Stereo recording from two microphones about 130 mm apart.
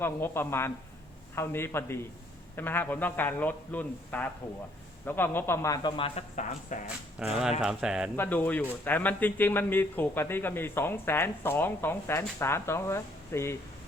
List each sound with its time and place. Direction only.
0.0 s a man's voice: 15° left (ahead or behind)
6.0 s speech: 60° left (ahead or behind)
7.2 s speech: 5° right (ahead or behind)
8.1 s a man's voice: 15° left (ahead or behind)